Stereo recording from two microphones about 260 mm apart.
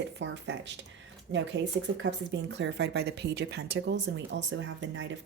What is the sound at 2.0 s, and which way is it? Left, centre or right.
Speech, right.